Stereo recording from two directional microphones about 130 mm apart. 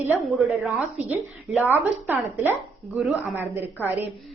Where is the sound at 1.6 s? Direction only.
15° right (ahead or behind).